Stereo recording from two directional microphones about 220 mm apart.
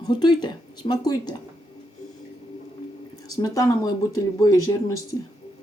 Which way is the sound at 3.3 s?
15° left (ahead or behind).